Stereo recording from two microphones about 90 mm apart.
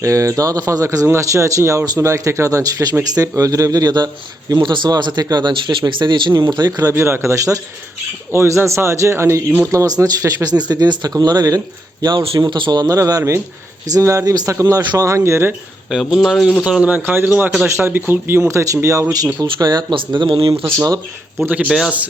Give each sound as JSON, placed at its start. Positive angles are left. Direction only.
{"t": 0.0, "sound": "speech", "side_deg": -35}
{"t": 4.6, "sound": "speech", "side_deg": -60}
{"t": 7.0, "sound": "a man's voice", "side_deg": -30}
{"t": 9.7, "sound": "speech", "side_deg": -40}
{"t": 12.4, "sound": "speech", "side_deg": -65}
{"t": 15.9, "sound": "a man's voice", "side_deg": -5}
{"t": 20.7, "sound": "speech", "side_deg": -40}
{"t": 21.3, "sound": "a man's voice", "side_deg": -20}